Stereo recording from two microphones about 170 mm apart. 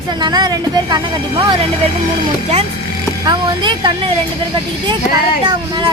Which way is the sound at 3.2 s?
30° right (ahead or behind).